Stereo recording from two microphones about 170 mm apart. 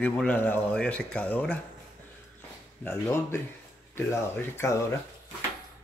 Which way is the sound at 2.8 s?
15° left (ahead or behind).